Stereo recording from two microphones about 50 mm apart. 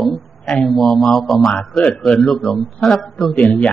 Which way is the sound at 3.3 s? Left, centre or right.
Left.